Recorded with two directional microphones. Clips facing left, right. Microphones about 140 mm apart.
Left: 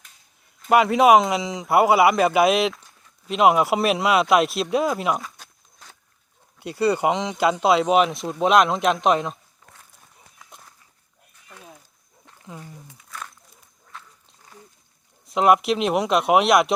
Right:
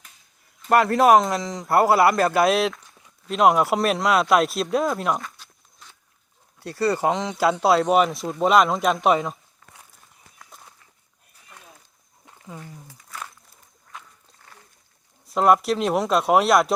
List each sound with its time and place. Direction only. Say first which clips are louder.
0.7 s speech: left 1 dB; centre (ahead or behind)
5.4 s walk: left 2 dB; 45° left (ahead or behind)
6.6 s speech: left 1 dB; centre (ahead or behind)
12.9 s a sound: right 1 dB; 5° right (ahead or behind)
15.3 s speech: left 1 dB; centre (ahead or behind)